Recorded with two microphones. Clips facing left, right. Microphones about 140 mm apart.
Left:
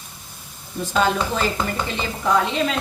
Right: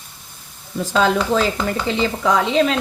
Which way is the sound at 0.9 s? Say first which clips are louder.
Right 4 dB; 90° right.